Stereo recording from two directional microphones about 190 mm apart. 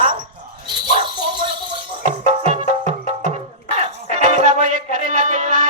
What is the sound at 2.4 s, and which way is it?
Music, 40° right (ahead or behind).